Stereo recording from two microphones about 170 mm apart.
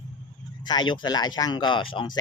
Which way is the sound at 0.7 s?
25° left (ahead or behind).